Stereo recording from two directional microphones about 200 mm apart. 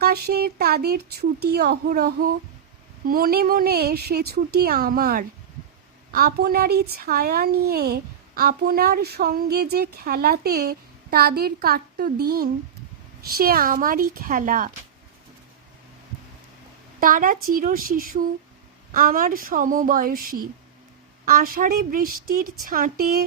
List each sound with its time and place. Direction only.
0.0 s speech: 50° right (ahead or behind)
17.0 s speech: 45° right (ahead or behind)